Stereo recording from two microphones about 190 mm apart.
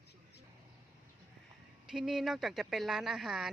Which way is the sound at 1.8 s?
5° right (ahead or behind).